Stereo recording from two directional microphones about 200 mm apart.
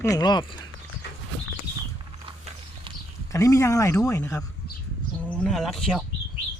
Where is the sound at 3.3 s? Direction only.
15° left (ahead or behind).